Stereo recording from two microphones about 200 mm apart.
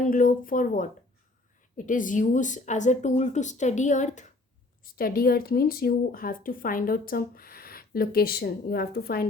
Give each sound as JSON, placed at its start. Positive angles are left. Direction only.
{"t": 0.0, "sound": "speech", "side_deg": 40}